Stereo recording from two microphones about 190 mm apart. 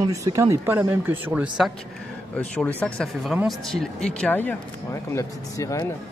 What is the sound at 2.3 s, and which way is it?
Speech, 5° left (ahead or behind).